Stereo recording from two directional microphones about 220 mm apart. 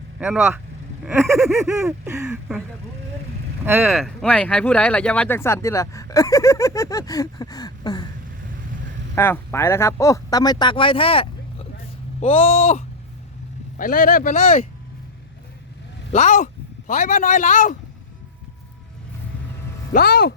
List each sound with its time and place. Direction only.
0.2 s speech: 10° right (ahead or behind)
3.7 s speech: centre (ahead or behind); by 8.0 s 20° left (ahead or behind)
9.1 s speech: 10° left (ahead or behind); by 14.7 s 30° left (ahead or behind)
16.1 s speech: 35° left (ahead or behind)
19.9 s speech: 45° left (ahead or behind)